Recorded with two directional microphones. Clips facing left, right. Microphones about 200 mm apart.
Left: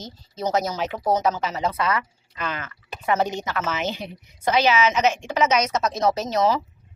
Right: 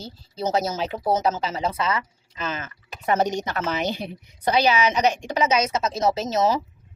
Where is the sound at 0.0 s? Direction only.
30° right (ahead or behind).